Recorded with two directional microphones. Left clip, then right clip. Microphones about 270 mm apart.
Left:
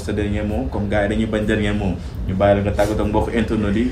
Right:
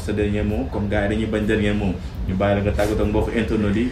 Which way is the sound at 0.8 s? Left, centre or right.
Centre.